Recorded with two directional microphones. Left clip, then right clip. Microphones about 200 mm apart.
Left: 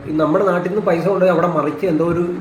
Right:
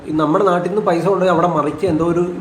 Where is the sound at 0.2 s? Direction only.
10° right (ahead or behind).